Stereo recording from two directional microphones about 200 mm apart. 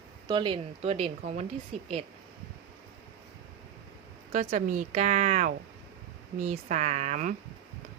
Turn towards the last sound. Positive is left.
turn(degrees=-40)  # may be behind; listen again after turning